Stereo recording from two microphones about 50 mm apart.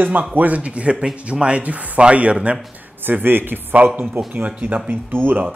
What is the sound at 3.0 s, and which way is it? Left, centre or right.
Speech, right.